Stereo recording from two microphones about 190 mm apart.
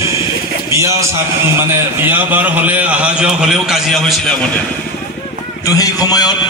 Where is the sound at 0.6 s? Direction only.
15° right (ahead or behind); by 4.5 s centre (ahead or behind).